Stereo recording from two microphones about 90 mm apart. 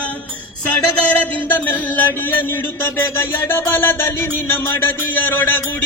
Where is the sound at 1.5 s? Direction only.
20° left (ahead or behind).